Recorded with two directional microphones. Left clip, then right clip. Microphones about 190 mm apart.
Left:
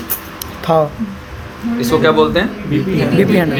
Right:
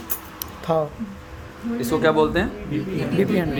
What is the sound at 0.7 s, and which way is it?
Speech, 15° left (ahead or behind).